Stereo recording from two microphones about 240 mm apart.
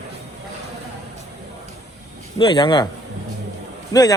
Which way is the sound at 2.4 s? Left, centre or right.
Centre.